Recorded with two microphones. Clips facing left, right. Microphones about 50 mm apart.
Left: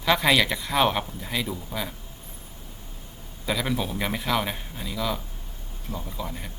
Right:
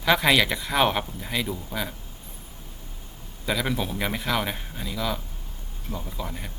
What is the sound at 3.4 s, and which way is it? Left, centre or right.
A man's voice, centre.